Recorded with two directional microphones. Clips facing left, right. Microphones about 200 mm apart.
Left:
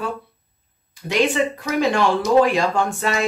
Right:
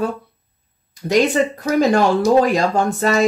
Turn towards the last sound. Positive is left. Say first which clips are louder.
# right 4 dB
turn(degrees=-40)  # may be behind; listen again after turning